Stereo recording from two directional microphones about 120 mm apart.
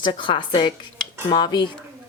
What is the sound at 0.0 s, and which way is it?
Speech, 40° left (ahead or behind).